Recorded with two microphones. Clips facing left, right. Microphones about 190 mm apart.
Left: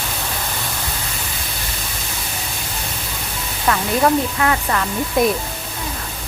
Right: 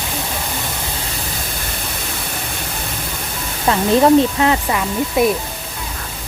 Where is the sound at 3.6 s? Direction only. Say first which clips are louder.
Right 4 dB; 25° right (ahead or behind).